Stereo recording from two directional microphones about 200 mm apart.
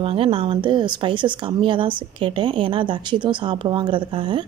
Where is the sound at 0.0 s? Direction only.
30° right (ahead or behind).